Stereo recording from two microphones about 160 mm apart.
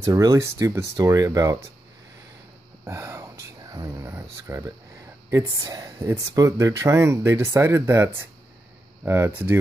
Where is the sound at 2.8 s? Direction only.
15° right (ahead or behind).